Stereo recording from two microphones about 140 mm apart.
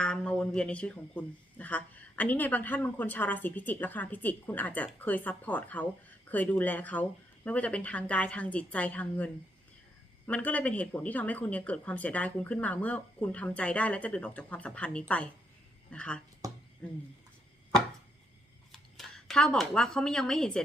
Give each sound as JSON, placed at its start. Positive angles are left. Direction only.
{"t": 0.0, "sound": "speech", "side_deg": 5}
{"t": 16.4, "sound": "speech", "side_deg": -25}
{"t": 16.8, "sound": "speech", "side_deg": 10}
{"t": 18.7, "sound": "speech", "side_deg": 0}